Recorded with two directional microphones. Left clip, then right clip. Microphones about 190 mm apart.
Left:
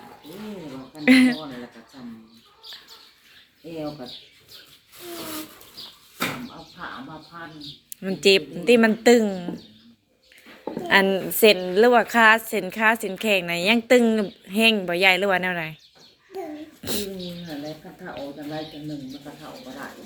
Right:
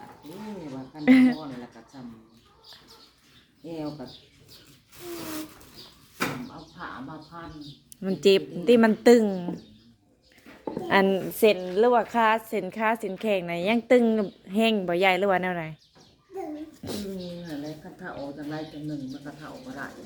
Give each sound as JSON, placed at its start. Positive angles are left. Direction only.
{"t": 1.0, "sound": "a sound", "side_deg": -10}
{"t": 7.9, "sound": "a woman's voice", "side_deg": -20}
{"t": 10.8, "sound": "a woman's voice", "side_deg": -15}
{"t": 11.2, "sound": "a woman's voice", "side_deg": 0}
{"t": 16.8, "sound": "speech", "side_deg": -10}
{"t": 17.6, "sound": "a sound", "side_deg": -15}
{"t": 19.2, "sound": "a woman's voice", "side_deg": -25}